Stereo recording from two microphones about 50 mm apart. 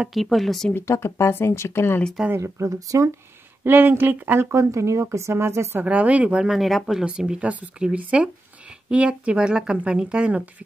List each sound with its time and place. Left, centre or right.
0.1 s speech: centre
0.8 s speech: left
2.3 s speech: right
3.6 s speech: right
4.4 s speech: right
5.1 s speech: right
5.9 s speech: right
6.5 s speech: centre
7.1 s speech: right